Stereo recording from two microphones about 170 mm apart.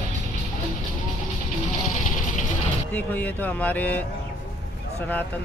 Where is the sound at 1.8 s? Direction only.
45° left (ahead or behind).